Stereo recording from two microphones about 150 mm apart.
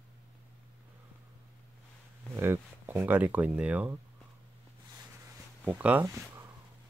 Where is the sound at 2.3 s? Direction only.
15° right (ahead or behind).